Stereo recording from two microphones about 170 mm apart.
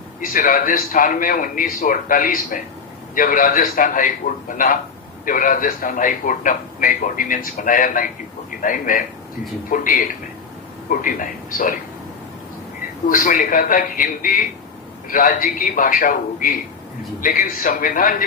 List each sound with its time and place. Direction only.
0.2 s a man's voice: 55° left (ahead or behind)
13.1 s a man's voice: 55° left (ahead or behind)